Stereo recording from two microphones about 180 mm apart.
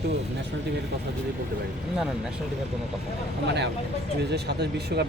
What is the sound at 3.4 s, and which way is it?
Speech, 75° right (ahead or behind).